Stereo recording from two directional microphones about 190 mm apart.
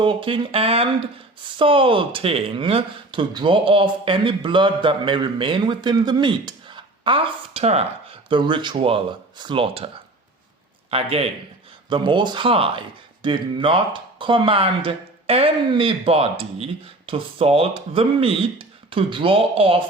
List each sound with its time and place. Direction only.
0.0 s speech: 25° right (ahead or behind)
10.9 s a man's voice: 30° right (ahead or behind)